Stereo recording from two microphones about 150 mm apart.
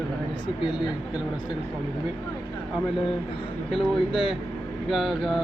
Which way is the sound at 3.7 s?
Centre (ahead or behind).